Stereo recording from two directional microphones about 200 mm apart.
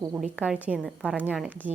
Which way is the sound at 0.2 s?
5° right (ahead or behind).